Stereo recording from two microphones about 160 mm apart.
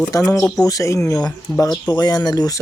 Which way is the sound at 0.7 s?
20° left (ahead or behind).